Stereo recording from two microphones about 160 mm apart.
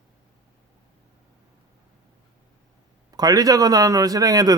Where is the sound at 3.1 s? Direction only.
25° right (ahead or behind).